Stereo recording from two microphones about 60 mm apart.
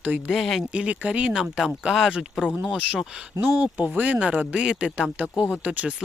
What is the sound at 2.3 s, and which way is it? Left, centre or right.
Speech, centre.